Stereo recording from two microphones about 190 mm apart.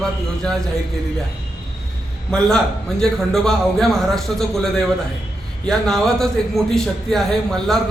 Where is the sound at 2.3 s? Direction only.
Centre (ahead or behind).